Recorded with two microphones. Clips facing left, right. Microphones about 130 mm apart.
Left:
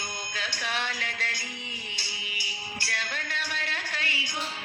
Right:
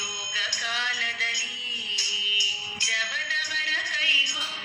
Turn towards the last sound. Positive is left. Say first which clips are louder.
# left 1 dB
turn(degrees=55)  # may be behind; listen again after turning